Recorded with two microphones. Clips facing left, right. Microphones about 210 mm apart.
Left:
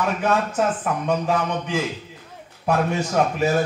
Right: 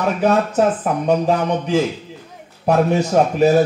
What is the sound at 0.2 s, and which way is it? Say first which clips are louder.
Speech: right 8 dB; 35° right (ahead or behind).